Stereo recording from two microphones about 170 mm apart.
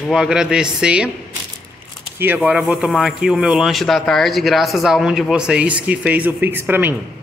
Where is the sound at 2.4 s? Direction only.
5° right (ahead or behind).